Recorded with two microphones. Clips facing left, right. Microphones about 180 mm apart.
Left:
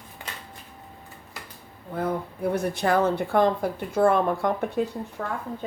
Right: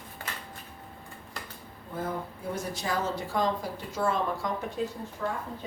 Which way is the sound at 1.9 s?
65° left (ahead or behind).